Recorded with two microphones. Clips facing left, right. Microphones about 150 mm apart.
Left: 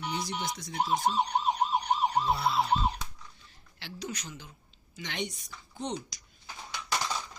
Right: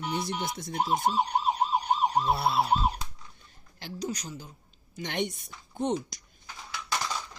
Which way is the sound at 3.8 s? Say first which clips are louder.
Right 5 dB; 40° right (ahead or behind).